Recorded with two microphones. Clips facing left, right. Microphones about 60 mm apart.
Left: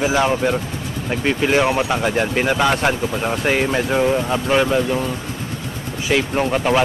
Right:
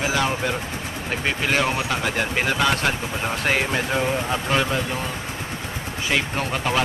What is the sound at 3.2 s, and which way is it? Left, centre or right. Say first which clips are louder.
Speech: left 4 dB; centre.